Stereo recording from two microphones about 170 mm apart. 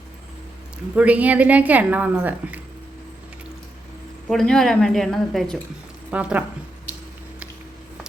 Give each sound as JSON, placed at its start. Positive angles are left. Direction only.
{"t": 0.9, "sound": "a woman's voice", "side_deg": -10}
{"t": 4.3, "sound": "a woman's voice", "side_deg": 5}